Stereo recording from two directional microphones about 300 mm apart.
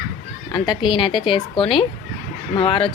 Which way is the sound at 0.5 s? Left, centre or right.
Centre.